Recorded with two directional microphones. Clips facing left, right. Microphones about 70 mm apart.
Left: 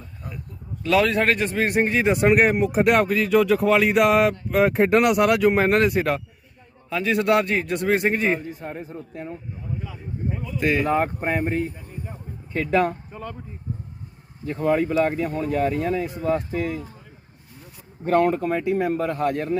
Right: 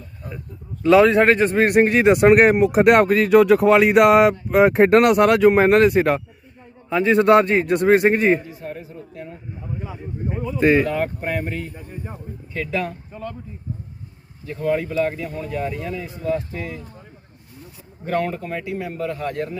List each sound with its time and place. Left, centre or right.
0.8 s a man's voice: right
1.6 s speech: right
2.6 s speech: right
4.9 s a man's voice: right
5.5 s a man's voice: centre; by 8.4 s right
8.4 s speech: left
9.8 s speech: right
10.6 s a man's voice: right
10.8 s speech: left
12.5 s speech: left
14.4 s speech: left
18.3 s speech: left